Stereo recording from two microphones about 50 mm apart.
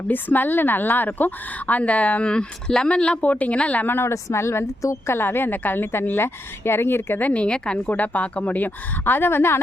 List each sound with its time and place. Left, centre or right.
0.1 s a woman's voice: left
3.8 s a woman's voice: left
4.1 s a woman's voice: left
5.1 s a woman's voice: left
7.2 s a woman's voice: left
7.9 s a woman's voice: left